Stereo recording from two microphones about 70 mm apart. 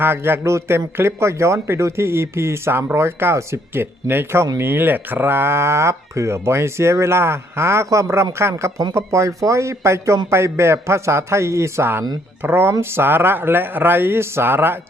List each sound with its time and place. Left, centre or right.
0.0 s speech: right